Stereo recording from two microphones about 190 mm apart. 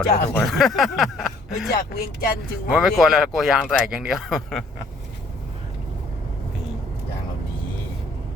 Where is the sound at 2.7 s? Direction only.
Centre (ahead or behind).